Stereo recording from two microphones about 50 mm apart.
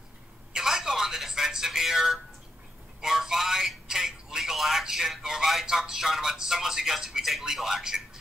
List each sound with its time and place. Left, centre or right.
0.5 s telephone: centre
3.0 s speech: centre